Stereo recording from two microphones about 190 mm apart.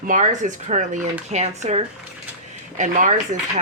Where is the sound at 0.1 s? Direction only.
40° right (ahead or behind).